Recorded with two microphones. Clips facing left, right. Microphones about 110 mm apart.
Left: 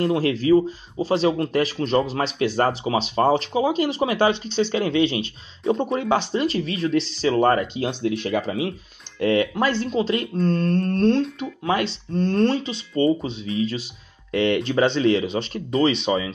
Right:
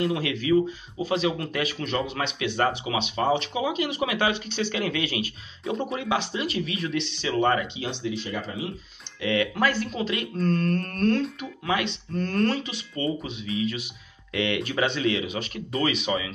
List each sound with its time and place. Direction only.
0.0 s speech: 35° left (ahead or behind); by 8.7 s 90° left
9.2 s speech: 40° left (ahead or behind)
9.6 s speech: 25° left (ahead or behind)